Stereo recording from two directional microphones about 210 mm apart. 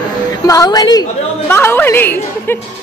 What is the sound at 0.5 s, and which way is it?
A woman's voice, 15° left (ahead or behind).